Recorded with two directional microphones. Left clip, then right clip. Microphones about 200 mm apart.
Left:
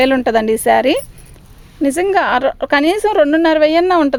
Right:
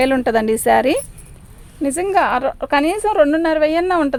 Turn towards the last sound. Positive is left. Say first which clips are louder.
# left 4 dB
turn(degrees=45)  # may be behind; listen again after turning